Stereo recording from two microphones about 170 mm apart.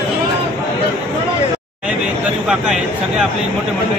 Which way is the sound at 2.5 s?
5° right (ahead or behind).